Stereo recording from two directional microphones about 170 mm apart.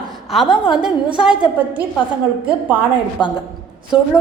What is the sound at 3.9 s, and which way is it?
Speech, 25° left (ahead or behind).